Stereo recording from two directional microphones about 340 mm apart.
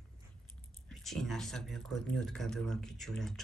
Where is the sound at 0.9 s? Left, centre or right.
Centre.